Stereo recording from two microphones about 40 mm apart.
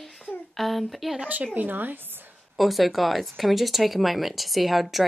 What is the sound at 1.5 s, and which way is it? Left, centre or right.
Speech, right.